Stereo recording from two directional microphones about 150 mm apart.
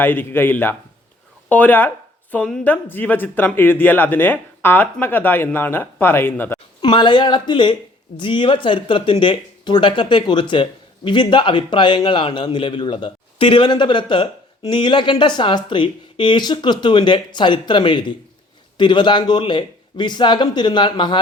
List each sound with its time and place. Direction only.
0.0 s speech: 15° left (ahead or behind)
6.8 s speech: 30° left (ahead or behind)